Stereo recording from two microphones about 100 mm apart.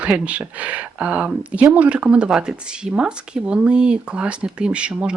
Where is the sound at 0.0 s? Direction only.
10° right (ahead or behind).